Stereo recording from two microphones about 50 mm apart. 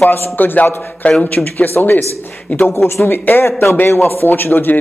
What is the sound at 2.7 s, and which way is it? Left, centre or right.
Speech, left.